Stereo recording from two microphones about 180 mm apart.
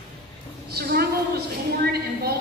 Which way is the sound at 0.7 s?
60° right (ahead or behind).